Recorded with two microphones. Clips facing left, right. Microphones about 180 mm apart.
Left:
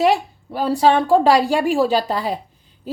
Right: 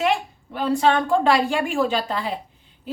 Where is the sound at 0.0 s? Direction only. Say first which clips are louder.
Left 5 dB; 35° left (ahead or behind).